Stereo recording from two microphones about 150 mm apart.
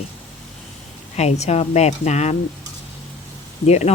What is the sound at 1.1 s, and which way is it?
Speech, 45° left (ahead or behind).